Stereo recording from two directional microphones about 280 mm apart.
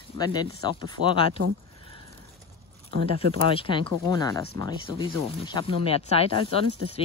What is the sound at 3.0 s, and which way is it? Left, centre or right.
Speech, centre.